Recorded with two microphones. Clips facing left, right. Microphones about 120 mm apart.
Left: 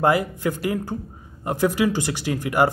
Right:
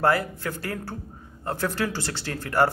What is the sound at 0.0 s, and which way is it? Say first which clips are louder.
Speech: left 3 dB; 15° left (ahead or behind).